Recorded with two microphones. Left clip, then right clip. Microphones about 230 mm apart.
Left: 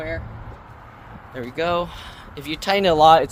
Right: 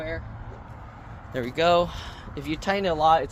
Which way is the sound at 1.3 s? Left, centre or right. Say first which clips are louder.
Right 2 dB; right.